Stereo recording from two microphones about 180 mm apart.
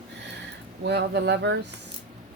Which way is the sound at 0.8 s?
70° right (ahead or behind).